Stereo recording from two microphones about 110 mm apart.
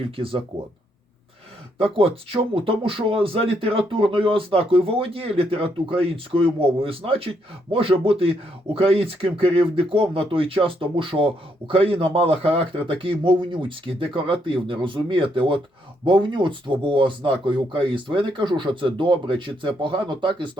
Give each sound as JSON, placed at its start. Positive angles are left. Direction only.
{"t": 0.2, "sound": "speech", "side_deg": -55}
{"t": 1.8, "sound": "speech", "side_deg": -55}